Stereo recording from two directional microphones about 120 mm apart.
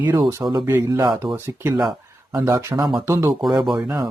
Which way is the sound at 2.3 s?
25° right (ahead or behind).